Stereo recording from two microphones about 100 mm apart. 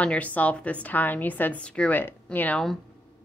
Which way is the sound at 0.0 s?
15° left (ahead or behind).